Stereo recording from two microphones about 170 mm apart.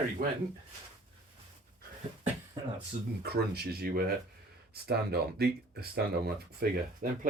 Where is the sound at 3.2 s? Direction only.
70° right (ahead or behind).